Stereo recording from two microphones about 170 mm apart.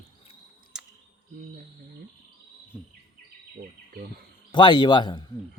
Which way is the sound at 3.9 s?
60° right (ahead or behind).